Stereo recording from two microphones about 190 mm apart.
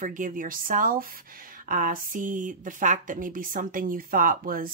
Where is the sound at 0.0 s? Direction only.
45° right (ahead or behind).